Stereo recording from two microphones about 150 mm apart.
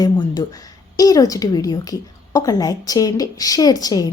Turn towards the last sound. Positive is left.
turn(degrees=25)  # may be behind; listen again after turning